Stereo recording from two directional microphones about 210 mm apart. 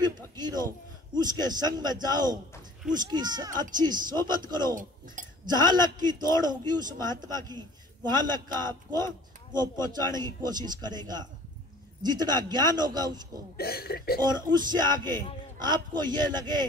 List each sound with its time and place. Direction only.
0.0 s a sound: 20° right (ahead or behind)
1.4 s a man's voice: 20° right (ahead or behind)
8.9 s a man's voice: 20° right (ahead or behind)
13.6 s speech: 45° left (ahead or behind)
14.2 s a man's voice: 20° right (ahead or behind)